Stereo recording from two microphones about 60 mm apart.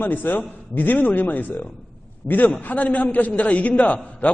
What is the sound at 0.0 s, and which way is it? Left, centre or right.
A man's voice, left.